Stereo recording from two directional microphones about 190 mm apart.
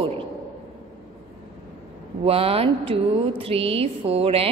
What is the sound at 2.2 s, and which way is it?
A woman's voice, 30° right (ahead or behind).